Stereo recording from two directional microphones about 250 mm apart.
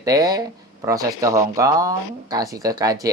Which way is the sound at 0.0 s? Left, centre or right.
Centre.